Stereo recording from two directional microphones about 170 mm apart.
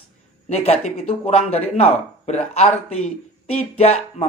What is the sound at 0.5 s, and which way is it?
Speech, 35° left (ahead or behind).